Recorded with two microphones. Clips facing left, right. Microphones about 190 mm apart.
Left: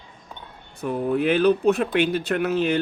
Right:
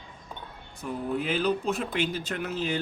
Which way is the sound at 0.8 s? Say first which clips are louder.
Left 8 dB; 60° left (ahead or behind).